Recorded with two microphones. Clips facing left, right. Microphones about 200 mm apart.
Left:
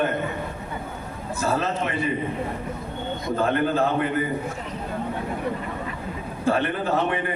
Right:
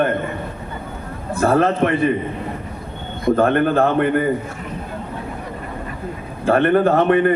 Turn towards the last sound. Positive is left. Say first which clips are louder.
# right 9 dB
turn(degrees=-60)  # may be behind; listen again after turning